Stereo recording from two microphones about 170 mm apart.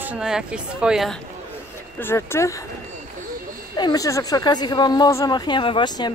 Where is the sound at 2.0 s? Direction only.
15° left (ahead or behind).